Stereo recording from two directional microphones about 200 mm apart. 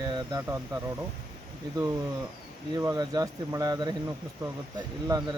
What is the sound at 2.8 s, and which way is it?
Speech, 15° right (ahead or behind).